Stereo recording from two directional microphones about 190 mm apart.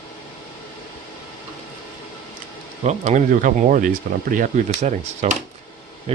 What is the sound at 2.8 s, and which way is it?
Speech, 40° right (ahead or behind).